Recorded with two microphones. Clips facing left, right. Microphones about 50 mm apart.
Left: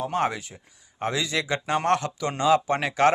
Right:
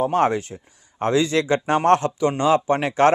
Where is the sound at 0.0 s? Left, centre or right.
Right.